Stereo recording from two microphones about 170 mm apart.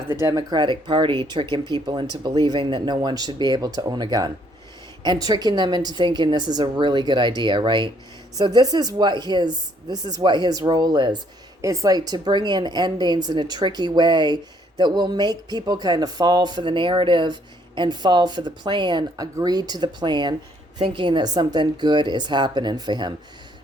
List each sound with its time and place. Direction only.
0.1 s speech: 15° right (ahead or behind)